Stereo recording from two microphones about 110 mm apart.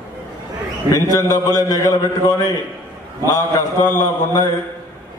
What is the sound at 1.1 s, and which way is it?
A man's voice, 30° left (ahead or behind).